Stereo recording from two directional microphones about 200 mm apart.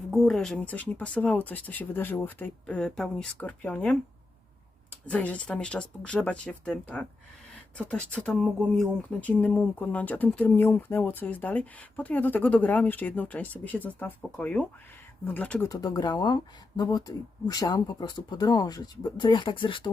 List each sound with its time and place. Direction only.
0.1 s speech: centre (ahead or behind)
5.0 s speech: 5° left (ahead or behind)
15.7 s speech: 20° left (ahead or behind)